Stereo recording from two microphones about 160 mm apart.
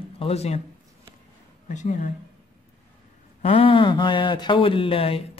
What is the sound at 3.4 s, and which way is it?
Speech, 35° left (ahead or behind).